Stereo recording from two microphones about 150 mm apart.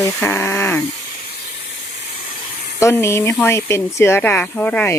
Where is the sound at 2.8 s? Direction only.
20° left (ahead or behind).